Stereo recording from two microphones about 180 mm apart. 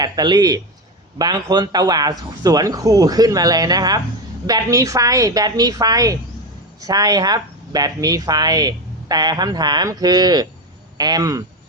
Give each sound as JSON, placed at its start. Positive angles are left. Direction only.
{"t": 0.0, "sound": "speech", "side_deg": -25}